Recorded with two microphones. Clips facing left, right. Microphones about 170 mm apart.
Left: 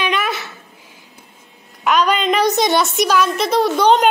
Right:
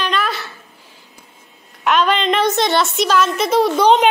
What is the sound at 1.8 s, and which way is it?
A woman's voice, centre (ahead or behind).